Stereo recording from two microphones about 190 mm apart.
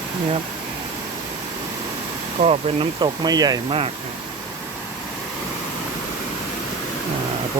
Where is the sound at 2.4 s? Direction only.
30° right (ahead or behind).